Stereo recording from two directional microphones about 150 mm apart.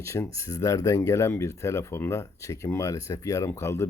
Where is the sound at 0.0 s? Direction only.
20° left (ahead or behind).